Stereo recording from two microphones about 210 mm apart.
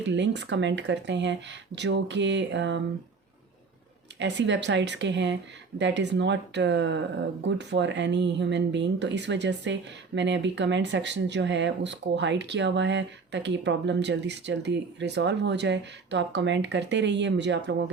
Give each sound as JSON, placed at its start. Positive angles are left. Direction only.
{"t": 0.0, "sound": "speech", "side_deg": -55}
{"t": 4.2, "sound": "speech", "side_deg": -55}